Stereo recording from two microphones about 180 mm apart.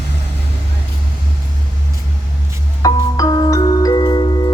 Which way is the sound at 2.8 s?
20° left (ahead or behind).